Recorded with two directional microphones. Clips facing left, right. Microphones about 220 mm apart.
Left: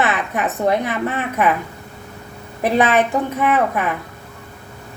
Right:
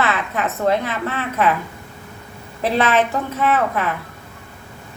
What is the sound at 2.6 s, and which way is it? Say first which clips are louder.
A woman's voice: left 2 dB; 15° left (ahead or behind).